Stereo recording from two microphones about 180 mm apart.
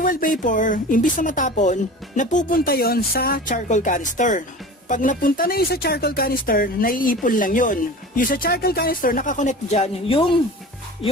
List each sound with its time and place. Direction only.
0.0 s speech: 50° left (ahead or behind); by 10.3 s 30° left (ahead or behind)